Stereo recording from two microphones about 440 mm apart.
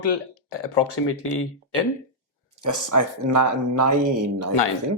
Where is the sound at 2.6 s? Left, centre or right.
Right.